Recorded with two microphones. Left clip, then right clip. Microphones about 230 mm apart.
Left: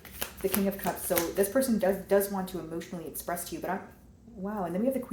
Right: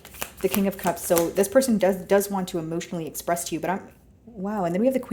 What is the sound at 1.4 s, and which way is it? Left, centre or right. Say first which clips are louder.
Speech: right 5 dB; right.